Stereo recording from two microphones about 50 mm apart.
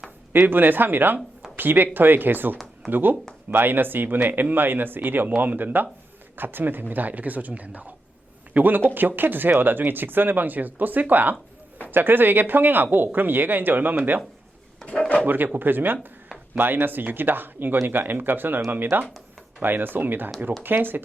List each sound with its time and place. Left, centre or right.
0.3 s speech: right
14.8 s speech: left
15.5 s speech: right